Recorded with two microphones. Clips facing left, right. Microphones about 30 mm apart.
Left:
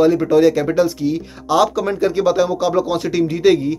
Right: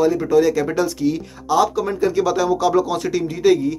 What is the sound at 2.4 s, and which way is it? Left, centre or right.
Speech, centre.